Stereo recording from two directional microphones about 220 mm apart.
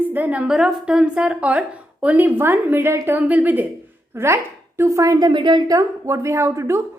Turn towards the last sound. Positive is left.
turn(degrees=-10)  # may be behind; listen again after turning